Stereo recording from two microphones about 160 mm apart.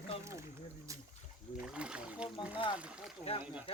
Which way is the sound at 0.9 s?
20° right (ahead or behind).